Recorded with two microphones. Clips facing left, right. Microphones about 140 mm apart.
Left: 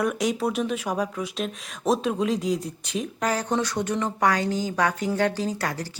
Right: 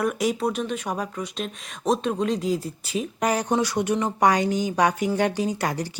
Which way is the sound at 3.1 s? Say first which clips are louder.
Right 3 dB; 15° right (ahead or behind).